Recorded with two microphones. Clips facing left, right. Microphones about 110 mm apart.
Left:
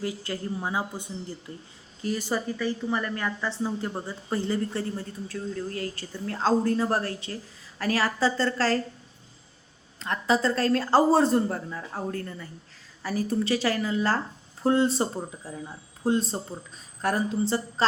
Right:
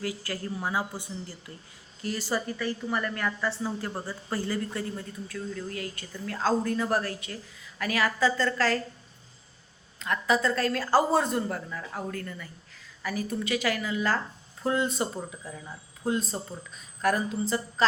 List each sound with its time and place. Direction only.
0.0 s a woman's voice: 25° left (ahead or behind)
10.0 s a woman's voice: 30° left (ahead or behind)